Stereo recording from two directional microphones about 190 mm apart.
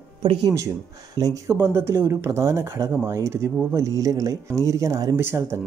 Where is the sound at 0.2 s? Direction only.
20° right (ahead or behind).